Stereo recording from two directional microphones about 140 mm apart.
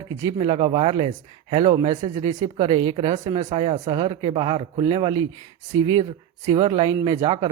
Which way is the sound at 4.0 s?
40° right (ahead or behind).